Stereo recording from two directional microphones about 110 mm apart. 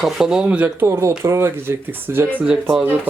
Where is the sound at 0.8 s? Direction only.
25° right (ahead or behind).